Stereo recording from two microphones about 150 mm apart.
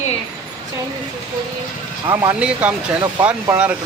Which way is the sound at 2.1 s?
10° right (ahead or behind).